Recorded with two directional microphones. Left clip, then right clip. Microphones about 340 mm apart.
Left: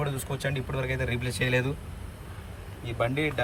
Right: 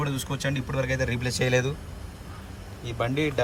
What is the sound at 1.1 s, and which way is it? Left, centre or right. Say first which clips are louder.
Speech: right 3 dB; centre.